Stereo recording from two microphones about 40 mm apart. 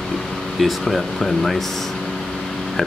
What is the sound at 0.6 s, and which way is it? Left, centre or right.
Speech, centre.